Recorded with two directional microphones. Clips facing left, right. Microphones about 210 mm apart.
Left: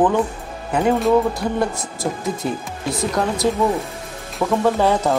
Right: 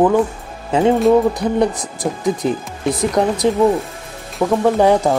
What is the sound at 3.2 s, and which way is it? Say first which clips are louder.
Music: right 5 dB; 20° right (ahead or behind).